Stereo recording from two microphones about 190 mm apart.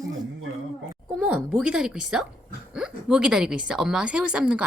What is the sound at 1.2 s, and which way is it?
A woman's voice, 5° right (ahead or behind).